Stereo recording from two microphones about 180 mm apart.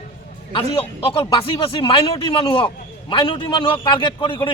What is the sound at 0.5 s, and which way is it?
A man's voice, 30° left (ahead or behind).